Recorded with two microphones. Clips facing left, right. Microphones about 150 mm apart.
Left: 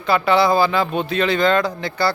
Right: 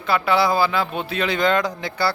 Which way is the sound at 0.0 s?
5° right (ahead or behind).